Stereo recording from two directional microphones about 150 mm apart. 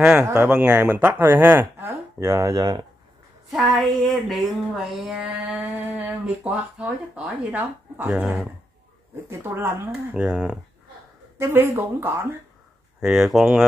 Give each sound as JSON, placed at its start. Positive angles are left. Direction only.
{"t": 0.2, "sound": "speech", "side_deg": -15}
{"t": 3.4, "sound": "speech", "side_deg": 0}
{"t": 9.1, "sound": "speech", "side_deg": -15}
{"t": 10.2, "sound": "speech", "side_deg": -5}
{"t": 11.3, "sound": "speech", "side_deg": -15}
{"t": 13.0, "sound": "speech", "side_deg": 0}